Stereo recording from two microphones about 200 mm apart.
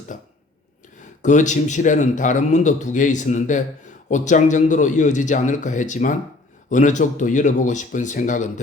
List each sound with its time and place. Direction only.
1.2 s a man's voice: 40° left (ahead or behind)